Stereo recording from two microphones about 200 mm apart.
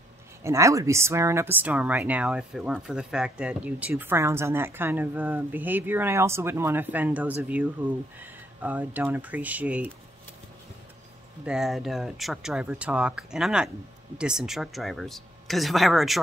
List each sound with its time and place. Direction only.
0.4 s speech: 15° right (ahead or behind)
11.4 s speech: 5° right (ahead or behind)